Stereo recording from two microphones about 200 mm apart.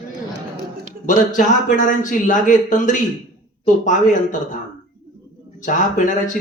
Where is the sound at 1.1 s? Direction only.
40° left (ahead or behind).